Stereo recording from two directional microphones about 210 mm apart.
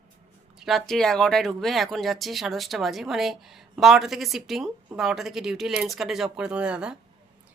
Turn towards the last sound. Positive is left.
turn(degrees=-5)  # may be behind; listen again after turning